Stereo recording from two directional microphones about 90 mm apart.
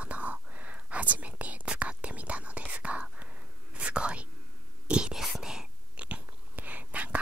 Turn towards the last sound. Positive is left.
turn(degrees=-15)  # may be behind; listen again after turning